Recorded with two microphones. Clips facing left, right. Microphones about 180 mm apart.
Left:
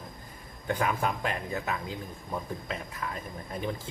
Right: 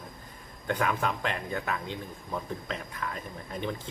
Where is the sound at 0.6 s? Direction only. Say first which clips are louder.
Even; 10° left (ahead or behind).